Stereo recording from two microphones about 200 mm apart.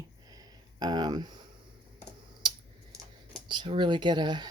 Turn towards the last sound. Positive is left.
turn(degrees=-20)  # may be behind; listen again after turning